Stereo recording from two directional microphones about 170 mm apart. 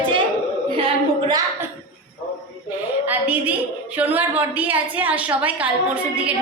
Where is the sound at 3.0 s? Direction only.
10° right (ahead or behind).